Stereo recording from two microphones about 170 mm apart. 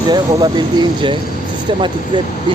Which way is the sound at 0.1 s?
25° right (ahead or behind).